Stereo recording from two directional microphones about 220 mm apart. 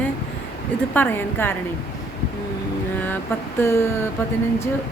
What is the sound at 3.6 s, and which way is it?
Speech, 10° left (ahead or behind).